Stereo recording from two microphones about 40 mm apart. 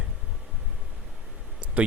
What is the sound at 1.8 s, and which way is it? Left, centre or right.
Speech, right.